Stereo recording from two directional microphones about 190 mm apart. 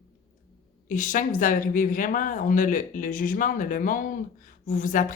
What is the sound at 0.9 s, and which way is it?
Speech, 45° left (ahead or behind).